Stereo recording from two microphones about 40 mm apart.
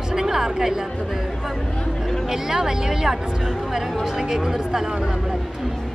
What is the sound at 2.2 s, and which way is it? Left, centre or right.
A woman's voice, centre.